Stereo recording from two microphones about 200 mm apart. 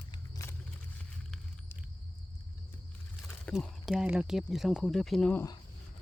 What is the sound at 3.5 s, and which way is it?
Speech, centre (ahead or behind).